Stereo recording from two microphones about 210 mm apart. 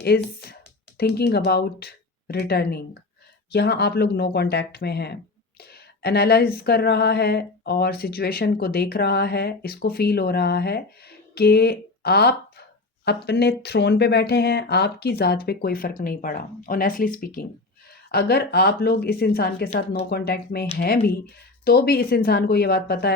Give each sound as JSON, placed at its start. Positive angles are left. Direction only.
{"t": 0.0, "sound": "speech", "side_deg": 50}